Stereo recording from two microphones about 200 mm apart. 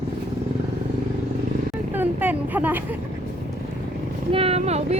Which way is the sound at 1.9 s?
10° right (ahead or behind).